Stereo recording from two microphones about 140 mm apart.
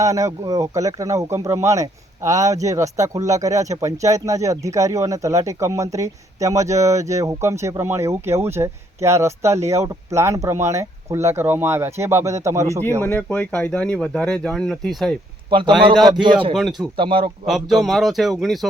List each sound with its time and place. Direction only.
0.0 s speech: 25° right (ahead or behind)
13.0 s speech: 10° left (ahead or behind)
15.4 s a man's voice: 35° right (ahead or behind)
17.0 s speech: 35° right (ahead or behind)
17.4 s speech: centre (ahead or behind)